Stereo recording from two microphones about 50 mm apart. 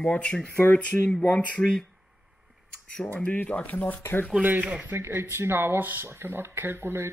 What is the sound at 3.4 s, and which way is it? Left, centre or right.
Speech, left.